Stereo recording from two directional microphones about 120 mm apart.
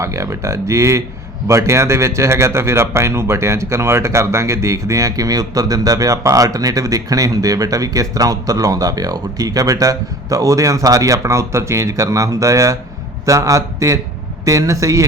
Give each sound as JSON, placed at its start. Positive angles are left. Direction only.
{"t": 0.0, "sound": "a man's voice", "side_deg": -25}